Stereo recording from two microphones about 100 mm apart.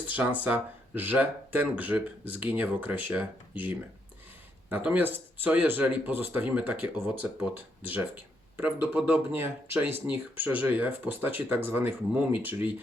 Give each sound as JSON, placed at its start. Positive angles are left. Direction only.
{"t": 0.1, "sound": "speech", "side_deg": -15}
{"t": 4.7, "sound": "speech", "side_deg": -20}